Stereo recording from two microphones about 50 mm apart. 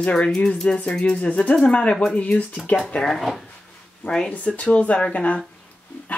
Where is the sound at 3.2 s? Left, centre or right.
Centre.